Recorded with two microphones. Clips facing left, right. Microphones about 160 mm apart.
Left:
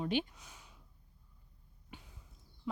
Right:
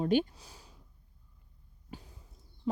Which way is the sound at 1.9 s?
35° right (ahead or behind).